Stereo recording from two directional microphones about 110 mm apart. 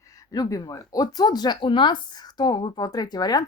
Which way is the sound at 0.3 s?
35° left (ahead or behind).